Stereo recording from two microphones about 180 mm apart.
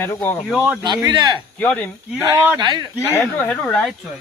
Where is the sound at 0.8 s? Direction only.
25° right (ahead or behind).